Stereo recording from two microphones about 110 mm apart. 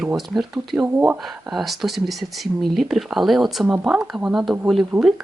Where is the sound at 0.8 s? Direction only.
15° right (ahead or behind).